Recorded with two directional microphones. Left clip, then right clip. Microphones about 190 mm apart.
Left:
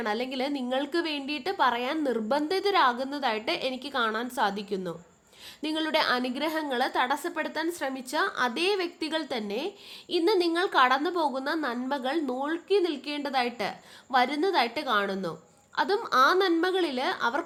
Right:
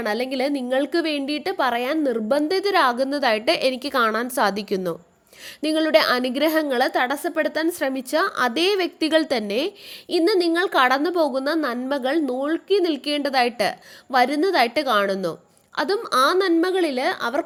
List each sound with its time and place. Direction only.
0.0 s a woman's voice: 30° right (ahead or behind)